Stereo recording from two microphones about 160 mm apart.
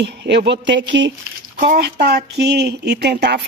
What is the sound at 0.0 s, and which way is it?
Speech, 90° right.